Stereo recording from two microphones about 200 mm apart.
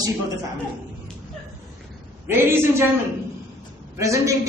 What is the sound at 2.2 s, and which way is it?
Speech, 10° right (ahead or behind).